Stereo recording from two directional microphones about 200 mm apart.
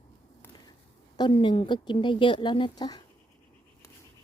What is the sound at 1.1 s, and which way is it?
A woman's voice, 25° left (ahead or behind).